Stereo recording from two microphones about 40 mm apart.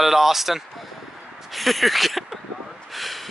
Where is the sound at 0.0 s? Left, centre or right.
Centre.